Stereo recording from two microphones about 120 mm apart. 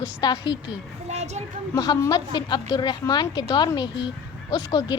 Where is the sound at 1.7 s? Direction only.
30° left (ahead or behind).